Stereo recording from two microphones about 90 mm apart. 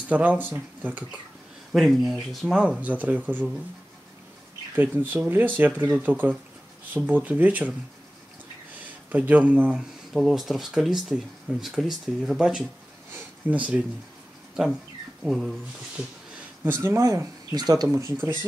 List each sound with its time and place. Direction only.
0.1 s speech: 20° right (ahead or behind)
1.7 s speech: centre (ahead or behind); by 3.4 s 20° right (ahead or behind)
4.7 s speech: 20° right (ahead or behind)
9.1 s speech: 20° right (ahead or behind)
10.1 s speech: centre (ahead or behind)
13.1 s a sound: 20° right (ahead or behind)
14.5 s speech: 5° right (ahead or behind)
16.6 s speech: 25° right (ahead or behind)
17.0 s speech: 40° right (ahead or behind)
17.8 s speech: 35° right (ahead or behind)